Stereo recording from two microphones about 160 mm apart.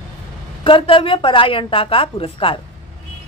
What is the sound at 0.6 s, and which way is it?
A woman's voice, 35° left (ahead or behind).